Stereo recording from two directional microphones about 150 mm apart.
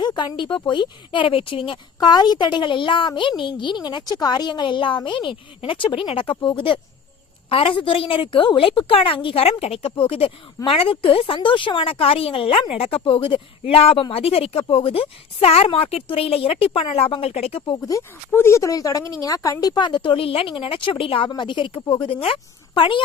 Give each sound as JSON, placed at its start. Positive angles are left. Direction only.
{"t": 0.0, "sound": "speech", "side_deg": 30}
{"t": 17.8, "sound": "speech", "side_deg": 20}